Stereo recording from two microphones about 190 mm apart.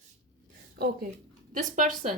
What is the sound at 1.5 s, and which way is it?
Speech, 45° right (ahead or behind).